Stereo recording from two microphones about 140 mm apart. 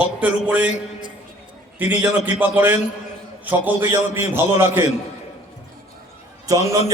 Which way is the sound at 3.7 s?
20° right (ahead or behind).